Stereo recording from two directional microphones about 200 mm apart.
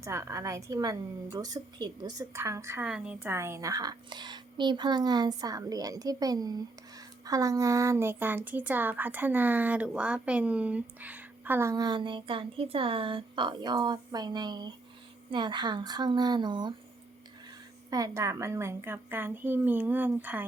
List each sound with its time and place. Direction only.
0.0 s a woman's voice: 15° right (ahead or behind)
17.9 s a woman's voice: 15° right (ahead or behind)